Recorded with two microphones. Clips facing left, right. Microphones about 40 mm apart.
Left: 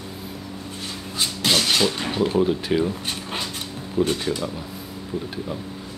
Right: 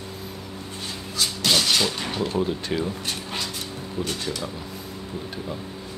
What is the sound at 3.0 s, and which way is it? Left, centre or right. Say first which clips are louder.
Dog: left 1 dB; left.